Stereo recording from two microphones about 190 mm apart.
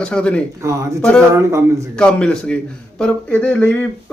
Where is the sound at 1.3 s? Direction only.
15° right (ahead or behind).